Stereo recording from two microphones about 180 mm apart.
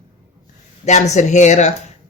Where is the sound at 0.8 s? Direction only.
40° left (ahead or behind).